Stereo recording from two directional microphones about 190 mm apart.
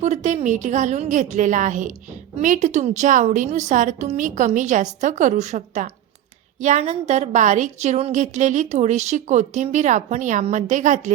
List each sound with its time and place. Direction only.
0.0 s a woman's voice: 40° right (ahead or behind)